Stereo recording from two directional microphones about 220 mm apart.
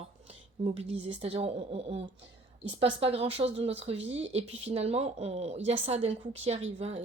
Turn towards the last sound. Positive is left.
turn(degrees=-30)  # may be behind; listen again after turning